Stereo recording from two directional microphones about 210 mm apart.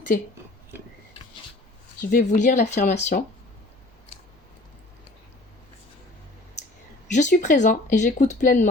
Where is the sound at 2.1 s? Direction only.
40° left (ahead or behind).